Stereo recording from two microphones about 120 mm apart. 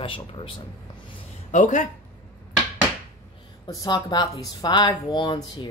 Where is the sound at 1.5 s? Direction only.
90° left.